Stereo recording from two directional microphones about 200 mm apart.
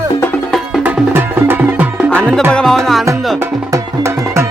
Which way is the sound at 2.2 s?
5° left (ahead or behind).